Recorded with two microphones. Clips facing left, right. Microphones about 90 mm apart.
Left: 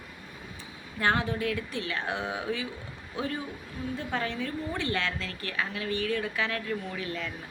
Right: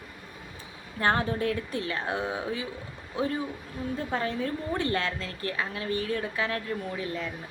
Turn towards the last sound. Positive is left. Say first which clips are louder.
# right 2 dB
turn(degrees=-30)  # may be behind; listen again after turning